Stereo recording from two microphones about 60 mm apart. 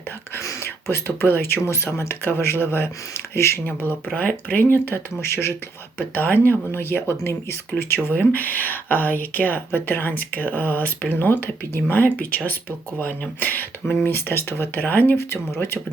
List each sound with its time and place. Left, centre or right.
0.3 s speech: left
0.9 s speech: left
4.1 s speech: left
4.6 s speech: left
6.0 s speech: left